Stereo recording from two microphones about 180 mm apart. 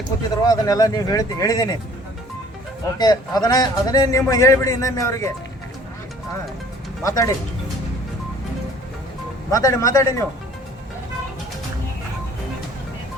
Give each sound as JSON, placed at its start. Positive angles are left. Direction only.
{"t": 0.4, "sound": "a man's voice", "side_deg": 20}
{"t": 3.0, "sound": "a man's voice", "side_deg": 20}
{"t": 7.0, "sound": "speech", "side_deg": 20}
{"t": 9.5, "sound": "a man's voice", "side_deg": 20}